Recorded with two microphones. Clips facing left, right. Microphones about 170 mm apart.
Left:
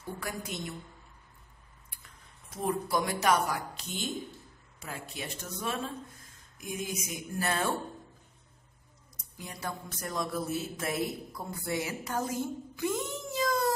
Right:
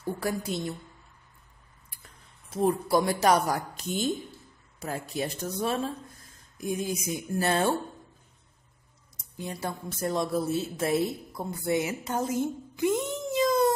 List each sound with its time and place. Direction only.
0.2 s speech: 35° right (ahead or behind)
2.5 s speech: 30° right (ahead or behind)
9.4 s speech: 25° right (ahead or behind)